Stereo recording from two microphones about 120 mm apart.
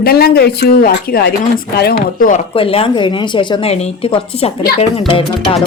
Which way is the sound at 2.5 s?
50° left (ahead or behind).